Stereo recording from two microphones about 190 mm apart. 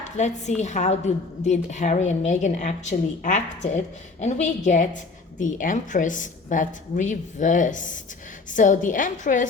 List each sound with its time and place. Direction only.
0.0 s a woman's voice: 40° left (ahead or behind)